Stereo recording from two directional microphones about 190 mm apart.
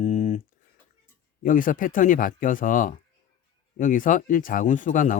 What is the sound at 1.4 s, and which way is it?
Speech, 45° left (ahead or behind).